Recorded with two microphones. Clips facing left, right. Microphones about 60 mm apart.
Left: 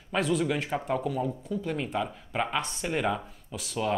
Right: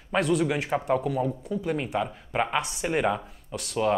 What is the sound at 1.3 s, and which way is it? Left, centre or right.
Speech, centre.